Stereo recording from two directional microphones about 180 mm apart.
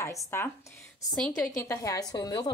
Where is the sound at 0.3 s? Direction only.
10° left (ahead or behind).